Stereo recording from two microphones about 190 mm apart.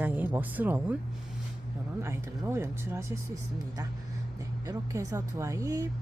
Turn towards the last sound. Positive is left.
turn(degrees=-20)  # may be behind; listen again after turning